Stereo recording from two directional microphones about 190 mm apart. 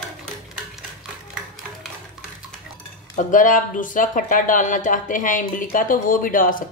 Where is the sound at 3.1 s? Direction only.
45° left (ahead or behind).